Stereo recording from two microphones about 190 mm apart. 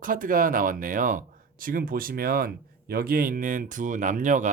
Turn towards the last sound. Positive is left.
turn(degrees=-40)  # may be behind; listen again after turning